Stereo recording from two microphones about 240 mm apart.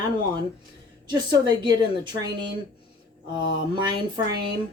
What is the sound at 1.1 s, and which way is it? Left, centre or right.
Speech, centre.